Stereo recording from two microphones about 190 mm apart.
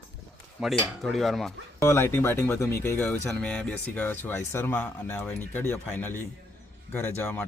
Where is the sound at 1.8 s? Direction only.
15° left (ahead or behind).